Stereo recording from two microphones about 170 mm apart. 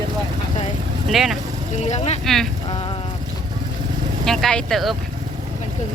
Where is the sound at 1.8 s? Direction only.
40° left (ahead or behind).